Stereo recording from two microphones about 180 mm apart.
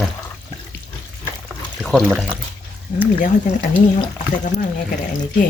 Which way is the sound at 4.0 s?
45° left (ahead or behind).